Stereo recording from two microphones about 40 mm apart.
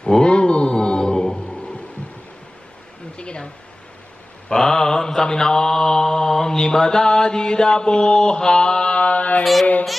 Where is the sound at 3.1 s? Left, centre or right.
Left.